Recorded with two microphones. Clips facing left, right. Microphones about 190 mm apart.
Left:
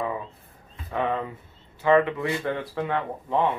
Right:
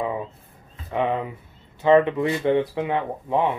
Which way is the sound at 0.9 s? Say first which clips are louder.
Right 3 dB; 15° right (ahead or behind).